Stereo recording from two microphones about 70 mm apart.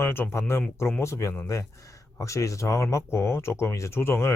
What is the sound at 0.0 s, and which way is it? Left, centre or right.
Speech, left.